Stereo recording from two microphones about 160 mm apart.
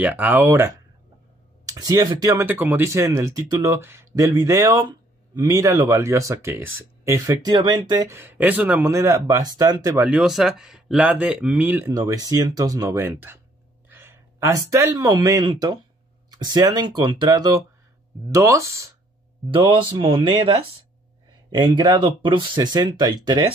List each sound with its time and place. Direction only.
0.0 s speech: 10° right (ahead or behind)
9.9 s speech: 5° right (ahead or behind)
11.9 s speech: 25° right (ahead or behind)
19.5 s speech: 30° right (ahead or behind)
21.5 s speech: 25° right (ahead or behind)